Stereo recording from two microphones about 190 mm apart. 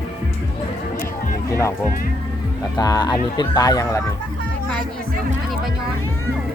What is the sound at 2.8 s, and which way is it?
Speech, 20° left (ahead or behind).